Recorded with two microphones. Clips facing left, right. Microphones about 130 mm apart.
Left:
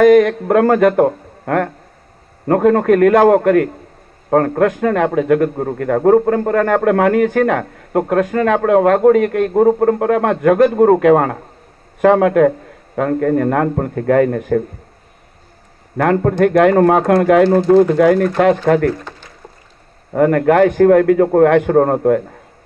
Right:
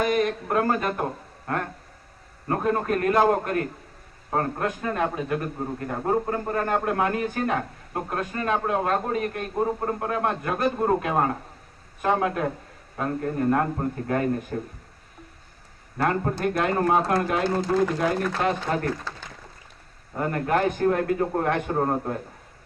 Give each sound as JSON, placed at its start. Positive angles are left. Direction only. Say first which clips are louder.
{"t": 0.0, "sound": "a man's voice", "louder": "left 14 dB", "side_deg": 85}
{"t": 9.6, "sound": "a man's voice", "louder": "left 13 dB", "side_deg": 65}
{"t": 16.0, "sound": "a man's voice", "louder": "left 11 dB", "side_deg": 80}
{"t": 17.6, "sound": "a man's voice", "louder": "left 13 dB", "side_deg": 90}
{"t": 20.1, "sound": "a man's voice", "louder": "left 13 dB", "side_deg": 75}